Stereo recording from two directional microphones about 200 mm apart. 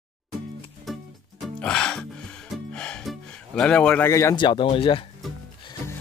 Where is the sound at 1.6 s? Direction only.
5° left (ahead or behind); by 5.0 s 25° left (ahead or behind).